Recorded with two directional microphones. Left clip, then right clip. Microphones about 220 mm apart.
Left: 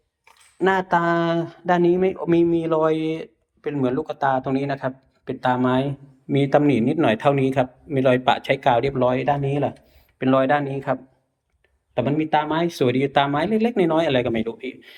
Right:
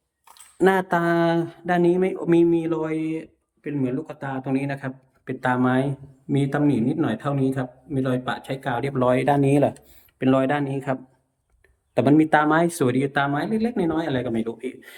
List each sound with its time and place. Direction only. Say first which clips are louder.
0.6 s speech: left 1 dB; 20° right (ahead or behind)
9.0 s speech: right 1 dB; 25° right (ahead or behind); by 14.5 s 5° right (ahead or behind)